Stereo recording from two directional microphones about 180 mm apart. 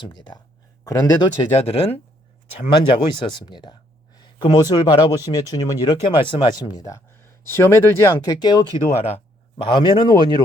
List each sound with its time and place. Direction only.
0.9 s speech: 20° left (ahead or behind)
9.6 s speech: 25° left (ahead or behind)